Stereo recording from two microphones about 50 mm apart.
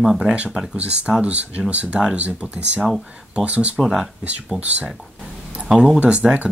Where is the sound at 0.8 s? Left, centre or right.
Right.